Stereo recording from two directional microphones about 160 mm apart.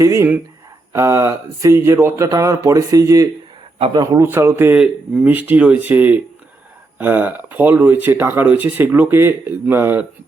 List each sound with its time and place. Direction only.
0.0 s speech: 15° right (ahead or behind)
3.8 s speech: 35° right (ahead or behind)
4.0 s speech: 20° right (ahead or behind)